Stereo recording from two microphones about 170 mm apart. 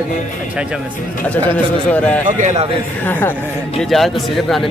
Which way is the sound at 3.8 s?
Centre (ahead or behind).